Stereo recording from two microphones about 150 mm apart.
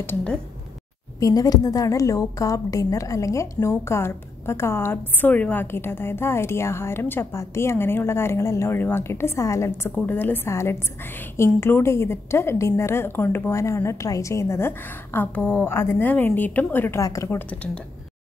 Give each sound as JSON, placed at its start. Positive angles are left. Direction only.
{"t": 0.0, "sound": "a woman's voice", "side_deg": 10}
{"t": 1.2, "sound": "a woman's voice", "side_deg": 25}